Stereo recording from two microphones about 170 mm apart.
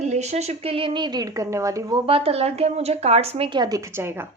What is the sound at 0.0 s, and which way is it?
Speech, 40° right (ahead or behind).